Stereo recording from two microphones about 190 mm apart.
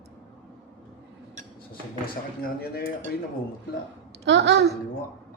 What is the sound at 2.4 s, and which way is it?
Dishes, 55° left (ahead or behind).